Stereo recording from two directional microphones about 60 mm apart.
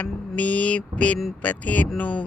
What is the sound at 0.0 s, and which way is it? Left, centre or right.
Mantra, left.